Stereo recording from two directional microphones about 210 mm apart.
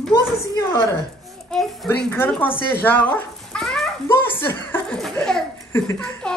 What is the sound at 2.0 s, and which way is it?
Speech, 5° left (ahead or behind).